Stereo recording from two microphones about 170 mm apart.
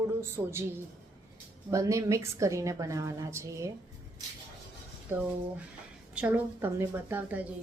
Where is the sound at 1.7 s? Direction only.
20° right (ahead or behind).